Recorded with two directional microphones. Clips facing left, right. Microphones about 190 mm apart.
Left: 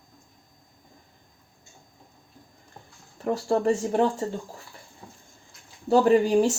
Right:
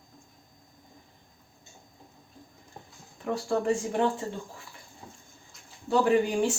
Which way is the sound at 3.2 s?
40° left (ahead or behind).